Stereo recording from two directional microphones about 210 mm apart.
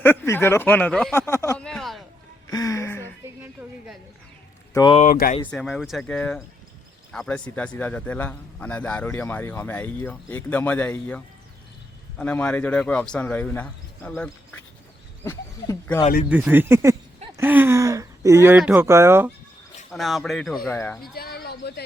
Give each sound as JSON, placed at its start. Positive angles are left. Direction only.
{"t": 0.0, "sound": "a man's voice", "side_deg": 10}
{"t": 1.6, "sound": "a sound", "side_deg": 0}
{"t": 2.5, "sound": "a sound", "side_deg": 15}
{"t": 4.7, "sound": "speech", "side_deg": 20}
{"t": 4.9, "sound": "speech", "side_deg": 40}
{"t": 5.5, "sound": "a man's voice", "side_deg": 5}
{"t": 16.3, "sound": "speech", "side_deg": -10}
{"t": 19.9, "sound": "a man's voice", "side_deg": 0}
{"t": 21.0, "sound": "speech", "side_deg": 45}